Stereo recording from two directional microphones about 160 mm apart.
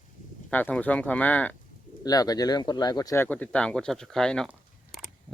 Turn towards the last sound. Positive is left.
turn(degrees=-5)  # may be behind; listen again after turning